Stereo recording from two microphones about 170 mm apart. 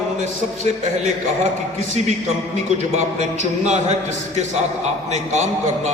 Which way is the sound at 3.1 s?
45° right (ahead or behind).